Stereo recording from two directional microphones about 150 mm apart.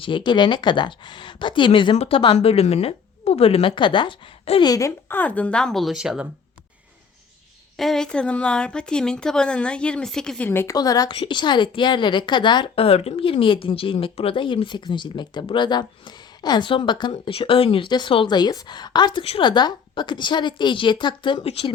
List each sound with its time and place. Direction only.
0.0 s a woman's voice: 30° left (ahead or behind)
4.6 s a woman's voice: 25° left (ahead or behind); by 6.2 s 5° right (ahead or behind)
7.8 s a woman's voice: 5° left (ahead or behind); by 21.7 s 40° left (ahead or behind)